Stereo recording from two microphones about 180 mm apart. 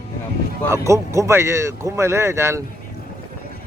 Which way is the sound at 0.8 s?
15° right (ahead or behind).